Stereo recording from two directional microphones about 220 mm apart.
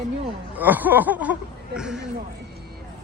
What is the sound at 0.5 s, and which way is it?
A woman's voice, 10° right (ahead or behind).